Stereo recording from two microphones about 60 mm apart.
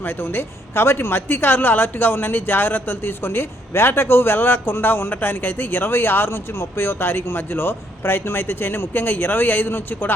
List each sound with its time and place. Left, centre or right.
0.0 s speech: left